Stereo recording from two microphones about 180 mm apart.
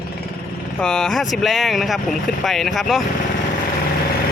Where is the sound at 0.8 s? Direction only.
5° left (ahead or behind).